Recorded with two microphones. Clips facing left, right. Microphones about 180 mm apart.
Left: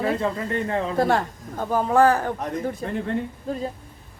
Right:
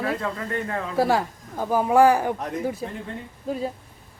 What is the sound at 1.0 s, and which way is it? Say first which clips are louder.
A woman's voice: right 2 dB; 5° right (ahead or behind).